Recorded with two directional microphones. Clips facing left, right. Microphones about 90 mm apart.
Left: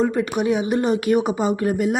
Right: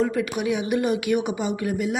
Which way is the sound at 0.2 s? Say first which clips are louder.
Left 4 dB; 35° left (ahead or behind).